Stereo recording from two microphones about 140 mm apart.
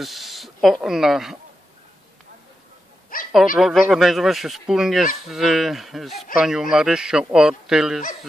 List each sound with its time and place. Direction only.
0.0 s speech: centre (ahead or behind)
3.1 s a sound: 80° left
3.5 s speech: 5° right (ahead or behind)